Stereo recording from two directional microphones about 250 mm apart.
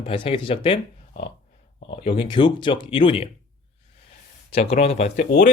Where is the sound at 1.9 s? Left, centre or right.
Left.